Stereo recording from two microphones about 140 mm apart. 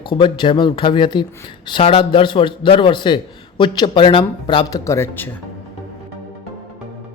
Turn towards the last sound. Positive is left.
turn(degrees=20)  # may be behind; listen again after turning